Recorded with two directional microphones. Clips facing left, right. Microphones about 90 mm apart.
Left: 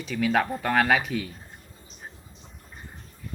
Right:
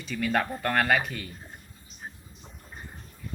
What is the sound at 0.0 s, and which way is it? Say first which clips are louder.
Speech: left 3 dB; centre (ahead or behind).